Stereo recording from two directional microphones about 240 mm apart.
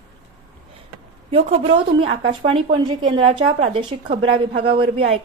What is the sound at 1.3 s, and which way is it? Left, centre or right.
A woman's voice, right.